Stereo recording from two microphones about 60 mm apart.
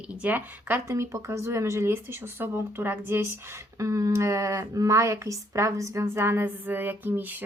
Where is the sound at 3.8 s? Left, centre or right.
Right.